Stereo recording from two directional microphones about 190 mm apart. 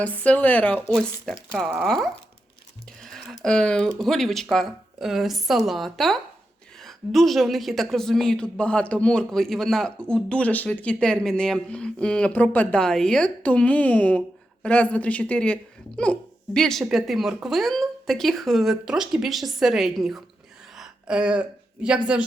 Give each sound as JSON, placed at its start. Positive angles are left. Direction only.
{"t": 0.0, "sound": "a woman's voice", "side_deg": 10}
{"t": 3.0, "sound": "a sound", "side_deg": 0}
{"t": 3.4, "sound": "a woman's voice", "side_deg": 5}
{"t": 16.6, "sound": "a woman's voice", "side_deg": 0}